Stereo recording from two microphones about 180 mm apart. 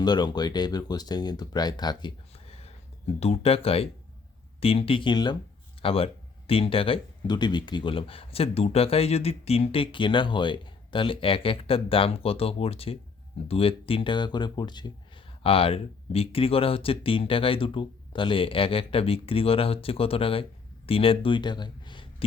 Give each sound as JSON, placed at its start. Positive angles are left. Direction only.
{"t": 0.0, "sound": "speech", "side_deg": 25}